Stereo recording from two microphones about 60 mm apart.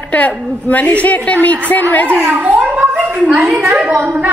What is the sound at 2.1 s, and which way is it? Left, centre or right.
Speech, right.